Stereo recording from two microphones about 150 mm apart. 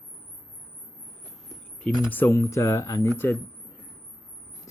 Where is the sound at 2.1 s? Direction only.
15° left (ahead or behind).